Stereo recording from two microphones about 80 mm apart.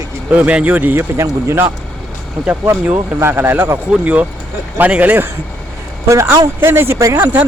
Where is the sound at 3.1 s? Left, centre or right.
Right.